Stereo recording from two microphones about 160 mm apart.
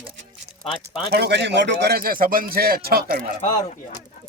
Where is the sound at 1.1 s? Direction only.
90° right; by 3.2 s 75° right (ahead or behind).